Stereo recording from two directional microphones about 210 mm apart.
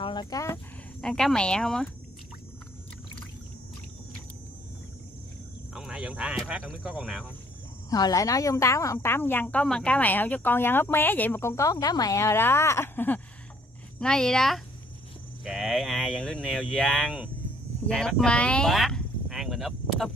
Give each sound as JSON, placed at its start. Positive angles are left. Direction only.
{"t": 0.0, "sound": "speech", "side_deg": 20}
{"t": 1.0, "sound": "speech", "side_deg": 5}
{"t": 5.8, "sound": "speech", "side_deg": -5}
{"t": 7.9, "sound": "a woman's voice", "side_deg": 15}
{"t": 17.8, "sound": "a sound", "side_deg": 5}